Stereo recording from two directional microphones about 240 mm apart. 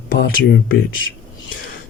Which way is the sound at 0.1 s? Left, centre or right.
Left.